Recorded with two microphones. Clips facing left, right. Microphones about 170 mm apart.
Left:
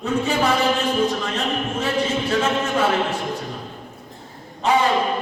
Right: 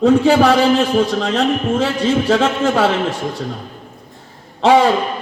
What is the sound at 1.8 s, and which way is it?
A man's voice, 85° right.